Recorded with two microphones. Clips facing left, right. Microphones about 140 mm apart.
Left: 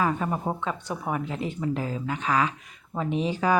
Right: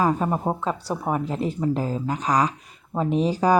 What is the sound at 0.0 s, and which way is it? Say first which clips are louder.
Speech: right 4 dB; 35° right (ahead or behind).